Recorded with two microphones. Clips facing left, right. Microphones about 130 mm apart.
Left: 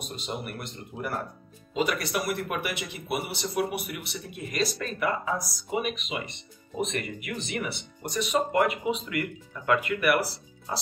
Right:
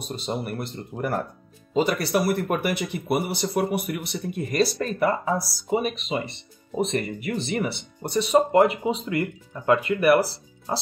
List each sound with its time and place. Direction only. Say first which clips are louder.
0.1 s speech: right 7 dB; 35° right (ahead or behind)